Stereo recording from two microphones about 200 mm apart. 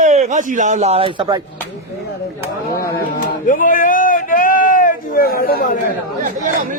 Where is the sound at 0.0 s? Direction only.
35° right (ahead or behind).